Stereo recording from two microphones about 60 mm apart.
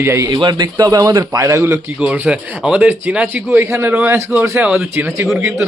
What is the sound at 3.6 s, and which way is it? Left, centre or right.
Speech, right.